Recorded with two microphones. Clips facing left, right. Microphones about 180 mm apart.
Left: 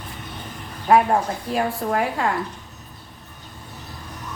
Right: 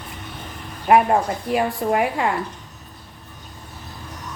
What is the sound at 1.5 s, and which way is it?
Speech, 15° right (ahead or behind).